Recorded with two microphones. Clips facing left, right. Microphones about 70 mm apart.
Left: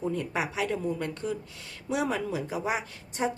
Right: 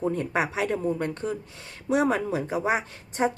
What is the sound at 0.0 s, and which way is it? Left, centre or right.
Speech, right.